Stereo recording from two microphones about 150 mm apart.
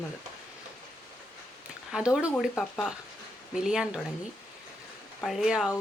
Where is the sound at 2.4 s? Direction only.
5° left (ahead or behind).